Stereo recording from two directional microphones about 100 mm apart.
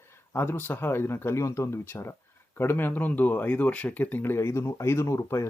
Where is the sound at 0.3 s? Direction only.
20° left (ahead or behind).